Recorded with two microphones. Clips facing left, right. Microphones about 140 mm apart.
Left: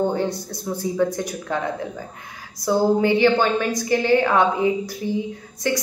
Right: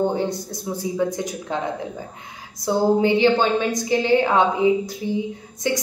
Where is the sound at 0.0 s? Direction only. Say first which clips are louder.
Even; 15° right (ahead or behind).